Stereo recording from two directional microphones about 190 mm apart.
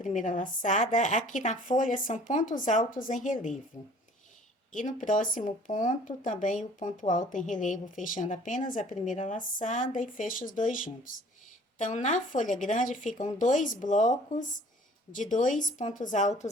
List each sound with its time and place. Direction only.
0.0 s speech: 45° left (ahead or behind)
4.7 s speech: 45° left (ahead or behind)